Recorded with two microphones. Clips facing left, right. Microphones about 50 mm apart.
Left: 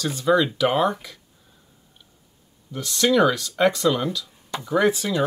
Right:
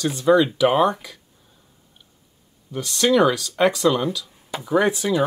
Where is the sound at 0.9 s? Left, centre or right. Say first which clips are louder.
Right 2 dB; centre.